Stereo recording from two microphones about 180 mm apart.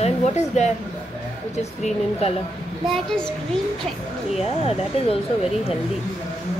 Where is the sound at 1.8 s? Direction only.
35° left (ahead or behind).